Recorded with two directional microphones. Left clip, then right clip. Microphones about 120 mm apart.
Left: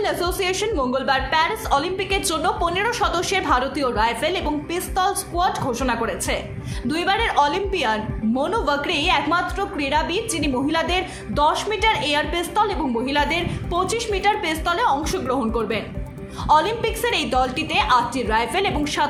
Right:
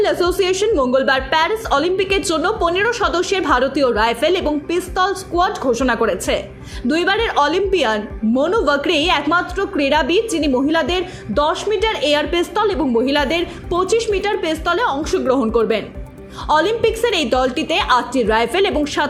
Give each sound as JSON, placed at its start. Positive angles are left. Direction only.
{"t": 0.0, "sound": "a woman's voice", "side_deg": -40}